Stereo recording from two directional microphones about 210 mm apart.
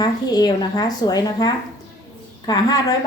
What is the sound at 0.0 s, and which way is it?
Speech, 20° left (ahead or behind).